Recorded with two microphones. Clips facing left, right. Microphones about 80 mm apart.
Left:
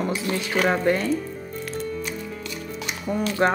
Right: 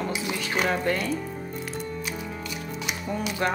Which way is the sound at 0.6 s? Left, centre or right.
Left.